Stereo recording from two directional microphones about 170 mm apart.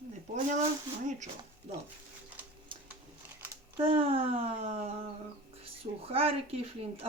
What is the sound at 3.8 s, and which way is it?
Speech, 35° right (ahead or behind).